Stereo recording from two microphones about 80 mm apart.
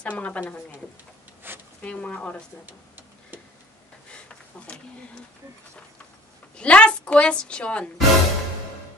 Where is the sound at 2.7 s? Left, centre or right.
Right.